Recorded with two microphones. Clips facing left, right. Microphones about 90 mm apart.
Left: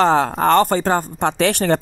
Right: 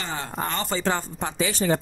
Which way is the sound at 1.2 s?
70° left (ahead or behind).